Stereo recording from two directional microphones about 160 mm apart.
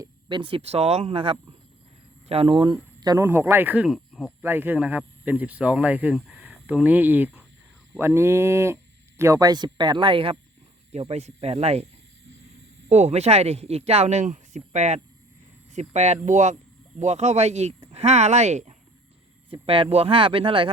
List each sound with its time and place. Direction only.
0.0 s a man's voice: 30° right (ahead or behind)
3.2 s speech: 15° right (ahead or behind)
3.8 s a sound: centre (ahead or behind)
4.4 s speech: 15° right (ahead or behind); by 11.9 s 40° right (ahead or behind)
12.9 s speech: 45° right (ahead or behind)
19.5 s speech: 35° right (ahead or behind)